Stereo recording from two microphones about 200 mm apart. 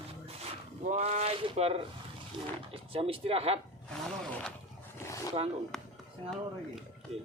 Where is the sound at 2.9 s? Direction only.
30° right (ahead or behind).